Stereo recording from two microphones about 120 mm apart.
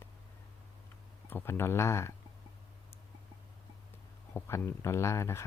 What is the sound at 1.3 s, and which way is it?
Speech, 20° left (ahead or behind).